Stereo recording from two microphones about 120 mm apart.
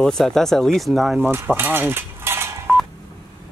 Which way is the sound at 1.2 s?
20° right (ahead or behind).